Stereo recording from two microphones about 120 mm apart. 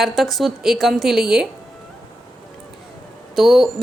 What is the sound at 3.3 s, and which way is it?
Speech, centre (ahead or behind).